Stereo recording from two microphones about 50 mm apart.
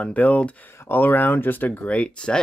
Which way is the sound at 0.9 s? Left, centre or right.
Left.